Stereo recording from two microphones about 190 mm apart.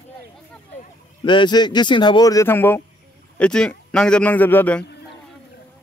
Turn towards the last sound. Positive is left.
turn(degrees=10)  # may be behind; listen again after turning